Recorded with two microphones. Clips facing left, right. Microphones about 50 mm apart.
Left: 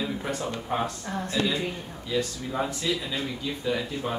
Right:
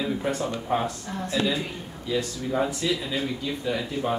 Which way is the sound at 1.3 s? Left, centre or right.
Centre.